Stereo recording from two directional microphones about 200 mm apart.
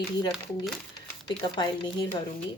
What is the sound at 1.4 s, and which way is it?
Speech, 25° left (ahead or behind).